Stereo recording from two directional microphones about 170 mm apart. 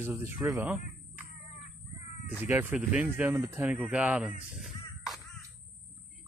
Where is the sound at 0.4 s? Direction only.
20° right (ahead or behind).